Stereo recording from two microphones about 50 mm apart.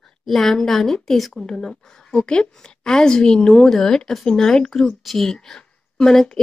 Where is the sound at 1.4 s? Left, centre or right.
Centre.